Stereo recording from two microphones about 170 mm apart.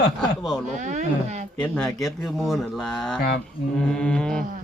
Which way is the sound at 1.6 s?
5° left (ahead or behind).